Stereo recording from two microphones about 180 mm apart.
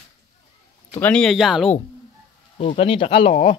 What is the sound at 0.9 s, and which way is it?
Speech, 5° left (ahead or behind).